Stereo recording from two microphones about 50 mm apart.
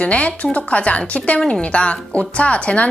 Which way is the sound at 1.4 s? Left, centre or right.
Centre.